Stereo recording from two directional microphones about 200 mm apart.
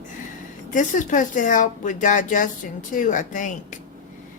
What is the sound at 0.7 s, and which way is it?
Speech, 40° left (ahead or behind).